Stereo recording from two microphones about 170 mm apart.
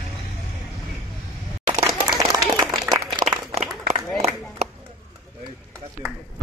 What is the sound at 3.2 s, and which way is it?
Applause, 30° right (ahead or behind).